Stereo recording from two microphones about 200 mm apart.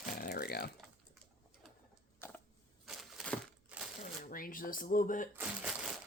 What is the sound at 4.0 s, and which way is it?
Shuffling cards, 45° left (ahead or behind).